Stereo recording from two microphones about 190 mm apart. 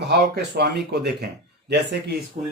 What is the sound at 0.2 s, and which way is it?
Speech, 60° right (ahead or behind).